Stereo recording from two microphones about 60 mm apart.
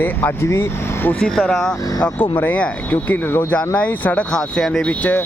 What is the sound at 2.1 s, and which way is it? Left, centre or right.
Speech, left.